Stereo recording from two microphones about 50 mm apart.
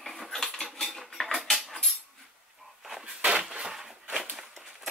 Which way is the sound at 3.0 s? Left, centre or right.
Centre.